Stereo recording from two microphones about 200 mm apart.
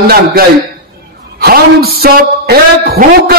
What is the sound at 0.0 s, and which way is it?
A man's voice, 50° right (ahead or behind).